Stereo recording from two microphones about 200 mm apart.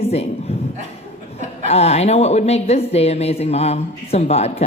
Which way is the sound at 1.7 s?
30° left (ahead or behind).